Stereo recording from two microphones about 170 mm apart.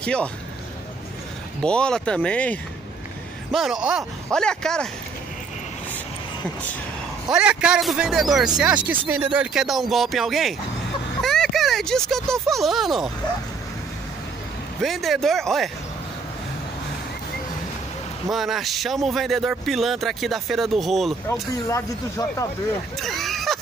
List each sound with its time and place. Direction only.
0.0 s a man's voice: 5° left (ahead or behind)
1.6 s speech: 5° left (ahead or behind)
3.5 s speech: 5° right (ahead or behind)
7.3 s speech: 5° right (ahead or behind)
14.8 s speech: centre (ahead or behind)
18.3 s speech: centre (ahead or behind)
21.3 s speech: 15° left (ahead or behind)
22.9 s a sound: centre (ahead or behind)